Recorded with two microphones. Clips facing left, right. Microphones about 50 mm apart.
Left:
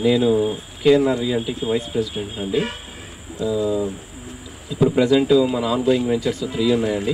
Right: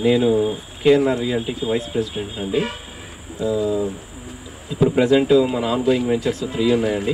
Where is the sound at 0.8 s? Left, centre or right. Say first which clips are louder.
Even; centre.